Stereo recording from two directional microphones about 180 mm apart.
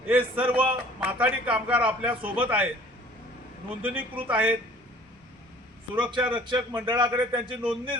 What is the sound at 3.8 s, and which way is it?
Speech, 10° right (ahead or behind).